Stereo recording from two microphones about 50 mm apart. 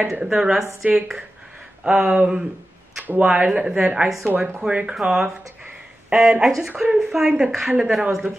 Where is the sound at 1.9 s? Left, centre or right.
Centre.